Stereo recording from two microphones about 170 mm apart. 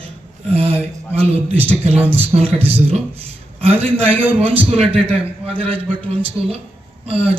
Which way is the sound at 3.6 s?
35° right (ahead or behind).